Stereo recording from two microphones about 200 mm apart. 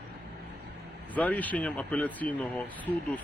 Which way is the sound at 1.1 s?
10° left (ahead or behind).